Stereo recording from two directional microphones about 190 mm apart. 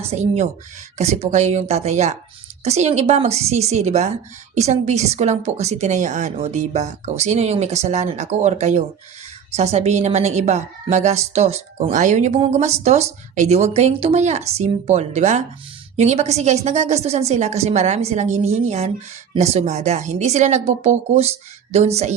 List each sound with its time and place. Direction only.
0.0 s a woman's voice: 35° right (ahead or behind)